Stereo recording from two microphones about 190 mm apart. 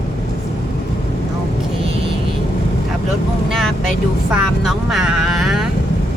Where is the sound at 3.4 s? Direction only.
Centre (ahead or behind).